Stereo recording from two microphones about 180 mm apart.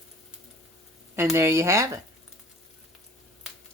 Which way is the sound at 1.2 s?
15° right (ahead or behind).